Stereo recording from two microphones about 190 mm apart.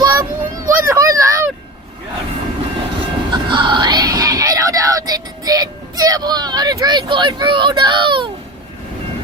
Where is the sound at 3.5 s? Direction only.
25° right (ahead or behind).